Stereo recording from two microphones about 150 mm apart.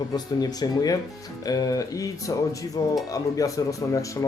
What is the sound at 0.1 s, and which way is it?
Speech, 25° left (ahead or behind).